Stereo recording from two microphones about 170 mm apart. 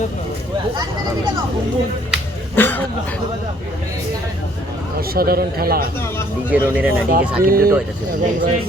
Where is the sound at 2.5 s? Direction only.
10° left (ahead or behind).